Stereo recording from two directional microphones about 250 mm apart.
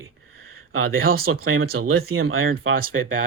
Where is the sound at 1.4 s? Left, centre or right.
Right.